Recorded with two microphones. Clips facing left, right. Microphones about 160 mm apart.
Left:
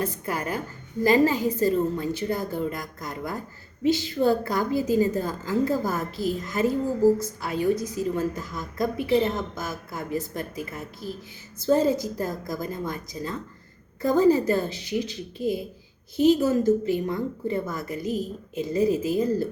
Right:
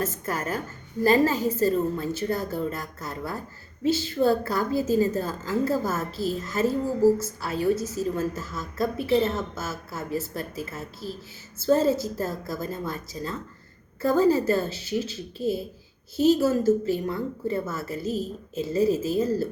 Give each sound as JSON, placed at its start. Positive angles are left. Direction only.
{"t": 0.0, "sound": "a woman's voice", "side_deg": 15}